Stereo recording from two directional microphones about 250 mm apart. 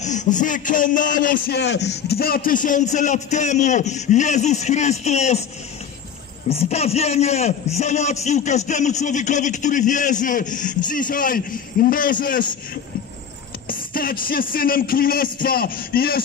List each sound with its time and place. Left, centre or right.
0.0 s a man's voice: left
6.5 s a man's voice: left
13.7 s a man's voice: left